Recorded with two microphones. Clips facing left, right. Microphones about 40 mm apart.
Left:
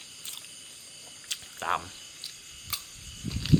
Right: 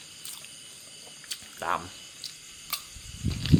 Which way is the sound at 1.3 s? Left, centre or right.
Left.